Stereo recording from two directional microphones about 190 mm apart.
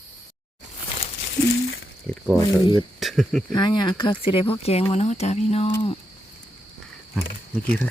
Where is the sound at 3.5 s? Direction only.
20° left (ahead or behind).